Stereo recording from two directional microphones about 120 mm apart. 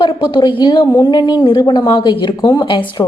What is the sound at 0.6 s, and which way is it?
A woman's voice, 40° left (ahead or behind).